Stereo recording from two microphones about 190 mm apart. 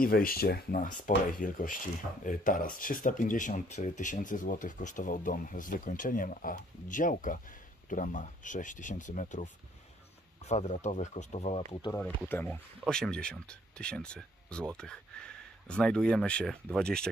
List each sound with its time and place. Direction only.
0.0 s speech: 50° left (ahead or behind); by 11.6 s 35° left (ahead or behind)
12.3 s speech: 10° left (ahead or behind)